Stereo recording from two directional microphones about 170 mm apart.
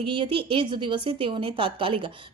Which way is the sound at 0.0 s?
30° right (ahead or behind).